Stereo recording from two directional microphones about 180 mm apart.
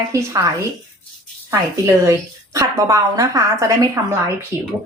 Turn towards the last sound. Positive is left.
turn(degrees=-15)  # may be behind; listen again after turning